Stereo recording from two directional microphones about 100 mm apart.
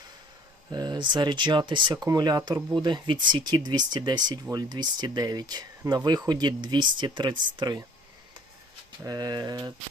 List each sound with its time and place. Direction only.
0.7 s speech: 45° right (ahead or behind)
9.0 s speech: 40° right (ahead or behind)